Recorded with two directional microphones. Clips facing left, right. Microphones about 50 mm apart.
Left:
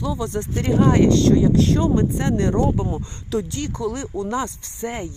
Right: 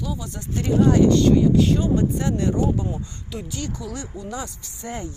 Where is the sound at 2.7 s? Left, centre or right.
Left.